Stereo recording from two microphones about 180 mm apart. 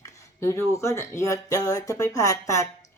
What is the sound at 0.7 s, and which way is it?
Speech, 15° left (ahead or behind).